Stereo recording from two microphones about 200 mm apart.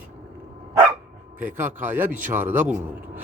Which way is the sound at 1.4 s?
10° right (ahead or behind).